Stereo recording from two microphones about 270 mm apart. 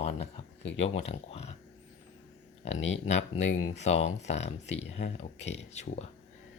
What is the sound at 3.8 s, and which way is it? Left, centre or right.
Speech, left.